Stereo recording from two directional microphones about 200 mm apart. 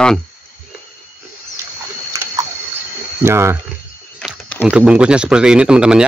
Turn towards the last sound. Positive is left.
turn(degrees=-5)  # may be behind; listen again after turning